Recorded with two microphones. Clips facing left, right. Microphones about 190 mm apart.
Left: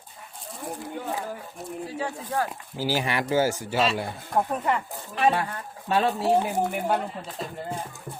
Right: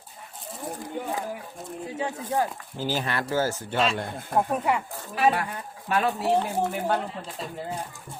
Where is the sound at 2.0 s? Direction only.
20° right (ahead or behind).